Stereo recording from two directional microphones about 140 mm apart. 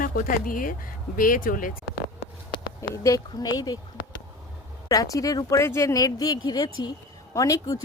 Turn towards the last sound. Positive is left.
turn(degrees=25)  # may be behind; listen again after turning